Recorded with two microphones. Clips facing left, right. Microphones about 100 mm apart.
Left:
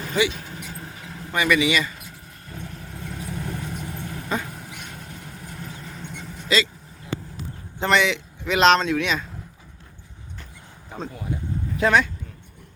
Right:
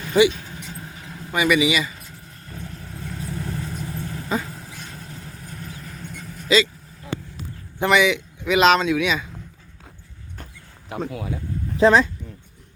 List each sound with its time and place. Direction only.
0.1 s speech: 15° right (ahead or behind)
2.5 s vehicle: 20° left (ahead or behind)
4.4 s dog: 20° left (ahead or behind)
5.2 s vehicle: 20° left (ahead or behind)
7.8 s speech: 10° right (ahead or behind)
10.9 s vehicle: 85° right
11.8 s speech: 30° right (ahead or behind)